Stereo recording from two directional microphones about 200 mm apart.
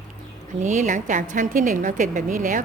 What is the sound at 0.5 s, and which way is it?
A woman's voice, 35° right (ahead or behind).